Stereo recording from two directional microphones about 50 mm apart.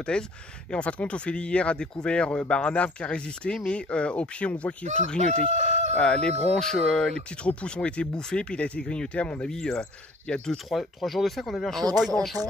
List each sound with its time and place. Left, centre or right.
0.1 s speech: centre
9.5 s speech: centre
10.7 s speech: centre